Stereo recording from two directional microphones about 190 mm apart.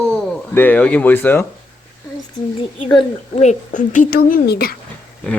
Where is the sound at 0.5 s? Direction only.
10° left (ahead or behind).